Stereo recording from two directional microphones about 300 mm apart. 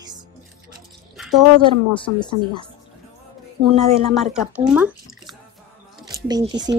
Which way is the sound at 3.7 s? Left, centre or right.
Centre.